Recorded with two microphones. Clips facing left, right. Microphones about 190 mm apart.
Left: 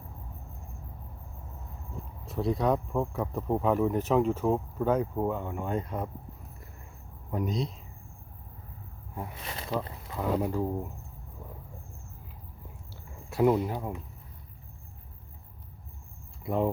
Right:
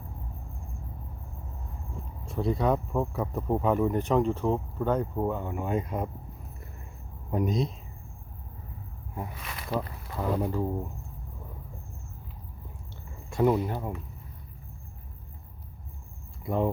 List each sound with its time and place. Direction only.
2.2 s speech: centre (ahead or behind)
7.3 s speech: 20° right (ahead or behind)
9.4 s speech: 30° left (ahead or behind)
10.2 s speech: centre (ahead or behind)
13.3 s speech: 5° left (ahead or behind)
16.4 s speech: centre (ahead or behind)